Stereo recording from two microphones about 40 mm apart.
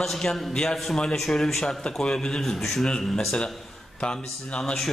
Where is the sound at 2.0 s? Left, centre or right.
Centre.